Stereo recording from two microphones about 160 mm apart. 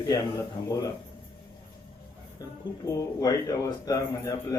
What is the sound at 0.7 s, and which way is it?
Speech, 20° left (ahead or behind).